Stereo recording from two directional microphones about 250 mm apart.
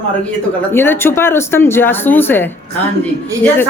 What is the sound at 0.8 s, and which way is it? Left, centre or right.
A woman's voice, centre.